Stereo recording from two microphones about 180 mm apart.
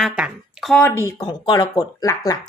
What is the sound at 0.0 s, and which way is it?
Speech, centre (ahead or behind).